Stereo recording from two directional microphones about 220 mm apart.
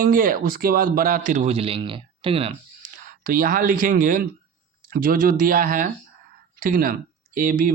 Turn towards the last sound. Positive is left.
turn(degrees=-40)  # may be behind; listen again after turning